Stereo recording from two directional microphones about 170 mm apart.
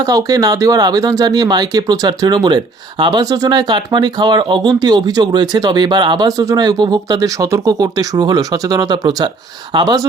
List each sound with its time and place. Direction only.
0.0 s speech: 20° right (ahead or behind)